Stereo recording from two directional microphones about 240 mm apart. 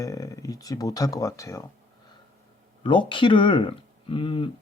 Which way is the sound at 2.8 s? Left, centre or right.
Centre.